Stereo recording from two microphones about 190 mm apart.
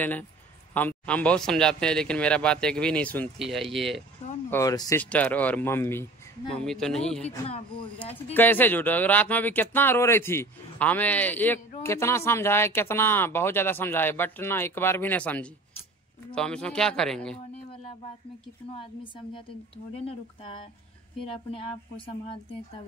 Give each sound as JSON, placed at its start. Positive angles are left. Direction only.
{"t": 0.7, "sound": "a man's voice", "side_deg": 10}
{"t": 4.5, "sound": "a man's voice", "side_deg": 15}
{"t": 7.4, "sound": "speech", "side_deg": 30}
{"t": 8.0, "sound": "a man's voice", "side_deg": 10}
{"t": 21.5, "sound": "speech", "side_deg": 30}